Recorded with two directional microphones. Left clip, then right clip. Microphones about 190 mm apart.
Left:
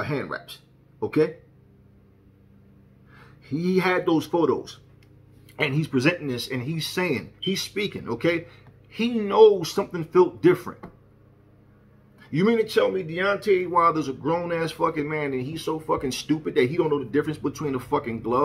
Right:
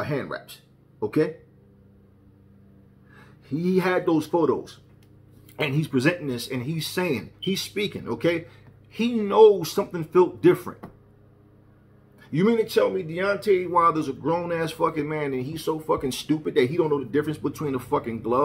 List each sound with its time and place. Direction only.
0.0 s speech: 5° left (ahead or behind)
3.2 s speech: 5° left (ahead or behind)
5.6 s speech: centre (ahead or behind)
12.2 s speech: 5° left (ahead or behind)